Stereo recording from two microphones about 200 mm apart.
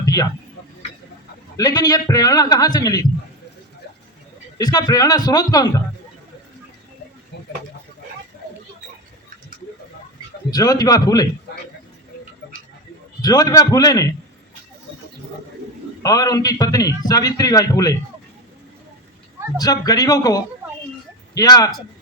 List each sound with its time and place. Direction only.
0.0 s a sound: 15° left (ahead or behind)
1.5 s a man's voice: 20° left (ahead or behind)
4.5 s a man's voice: 20° left (ahead or behind)
10.5 s a man's voice: 20° left (ahead or behind)
13.2 s a man's voice: 20° left (ahead or behind)
16.0 s a man's voice: 20° left (ahead or behind)
19.5 s a man's voice: 20° left (ahead or behind)